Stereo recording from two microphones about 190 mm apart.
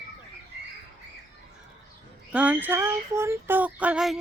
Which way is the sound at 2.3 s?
5° right (ahead or behind).